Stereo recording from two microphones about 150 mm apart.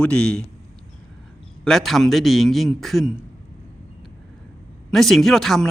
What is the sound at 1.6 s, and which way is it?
Speech, centre (ahead or behind).